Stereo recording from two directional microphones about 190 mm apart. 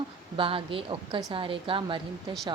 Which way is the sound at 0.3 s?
30° right (ahead or behind).